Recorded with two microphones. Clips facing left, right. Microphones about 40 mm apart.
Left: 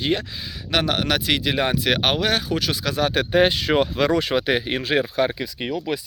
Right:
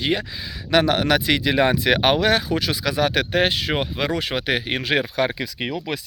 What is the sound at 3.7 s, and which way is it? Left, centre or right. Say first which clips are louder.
Speech: left 4 dB; right.